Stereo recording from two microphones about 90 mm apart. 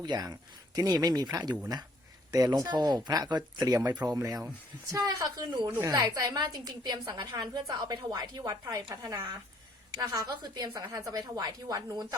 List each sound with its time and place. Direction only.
0.0 s a woman's voice: 50° right (ahead or behind)
3.9 s a woman's voice: 45° right (ahead or behind)
5.8 s speech: 35° right (ahead or behind)
6.8 s a woman's voice: 50° right (ahead or behind)
9.0 s a woman's voice: 40° right (ahead or behind)